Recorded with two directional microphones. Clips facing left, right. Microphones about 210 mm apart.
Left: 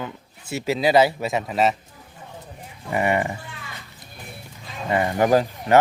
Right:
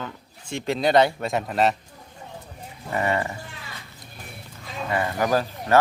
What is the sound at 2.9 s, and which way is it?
Speech, 15° left (ahead or behind).